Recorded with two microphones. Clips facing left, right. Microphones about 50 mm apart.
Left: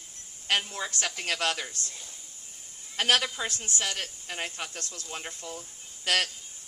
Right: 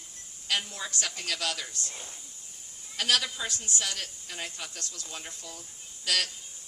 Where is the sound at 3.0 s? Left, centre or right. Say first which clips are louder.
Left 3 dB; left.